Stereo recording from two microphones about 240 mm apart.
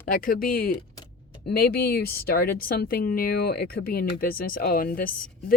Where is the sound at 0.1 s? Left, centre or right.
Left.